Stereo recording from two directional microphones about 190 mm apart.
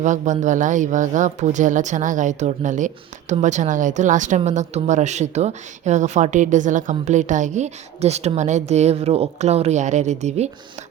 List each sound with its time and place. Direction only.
0.0 s speech: 40° right (ahead or behind)